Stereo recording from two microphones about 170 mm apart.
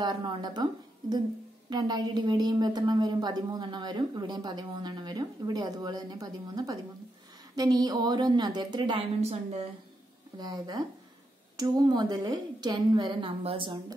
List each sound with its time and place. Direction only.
0.0 s a woman's voice: 25° right (ahead or behind)
9.2 s a woman's voice: 35° right (ahead or behind)
10.3 s a woman's voice: 25° right (ahead or behind)